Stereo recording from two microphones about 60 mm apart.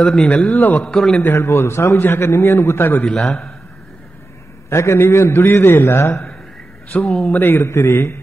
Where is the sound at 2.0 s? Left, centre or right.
Left.